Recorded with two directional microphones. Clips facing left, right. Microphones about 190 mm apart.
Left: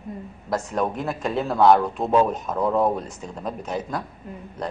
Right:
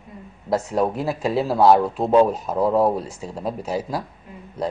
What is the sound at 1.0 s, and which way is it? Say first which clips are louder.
A man's voice: right 3 dB; 5° right (ahead or behind).